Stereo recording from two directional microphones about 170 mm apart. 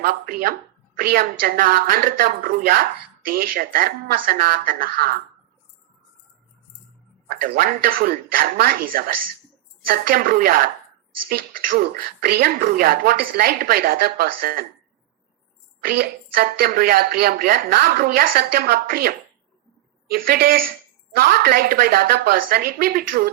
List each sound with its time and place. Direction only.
0.0 s speech: 65° right (ahead or behind)
7.3 s speech: 60° right (ahead or behind)
15.8 s speech: 60° right (ahead or behind)